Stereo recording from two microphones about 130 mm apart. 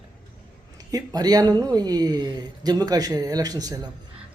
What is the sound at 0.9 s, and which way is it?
Speech, 30° right (ahead or behind).